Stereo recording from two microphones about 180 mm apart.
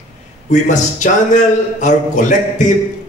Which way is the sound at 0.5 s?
45° left (ahead or behind).